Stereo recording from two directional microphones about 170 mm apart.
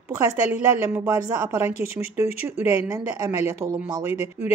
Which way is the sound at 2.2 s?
15° right (ahead or behind).